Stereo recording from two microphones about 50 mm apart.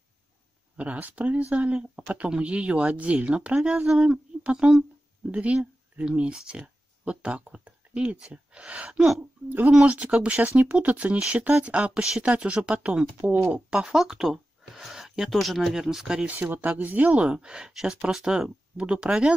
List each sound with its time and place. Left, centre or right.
0.7 s speech: right
11.9 s speech: centre
12.2 s speech: right
13.3 s speech: right
13.8 s a sound: centre
15.2 s speech: centre
16.3 s speech: right; by 19.3 s centre